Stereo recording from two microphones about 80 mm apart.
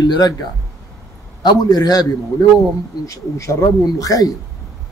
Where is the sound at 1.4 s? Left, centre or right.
Left.